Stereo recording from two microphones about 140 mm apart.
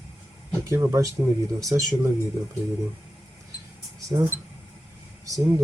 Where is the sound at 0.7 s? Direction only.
20° right (ahead or behind).